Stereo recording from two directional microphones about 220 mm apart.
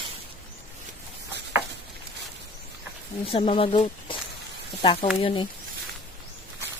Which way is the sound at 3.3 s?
25° left (ahead or behind).